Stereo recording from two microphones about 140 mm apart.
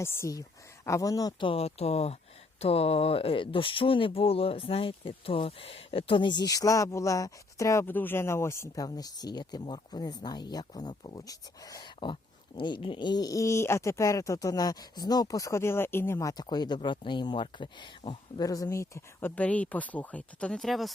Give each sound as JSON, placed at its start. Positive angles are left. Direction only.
{"t": 0.0, "sound": "speech", "side_deg": 20}
{"t": 1.5, "sound": "speech", "side_deg": 45}
{"t": 18.4, "sound": "speech", "side_deg": 25}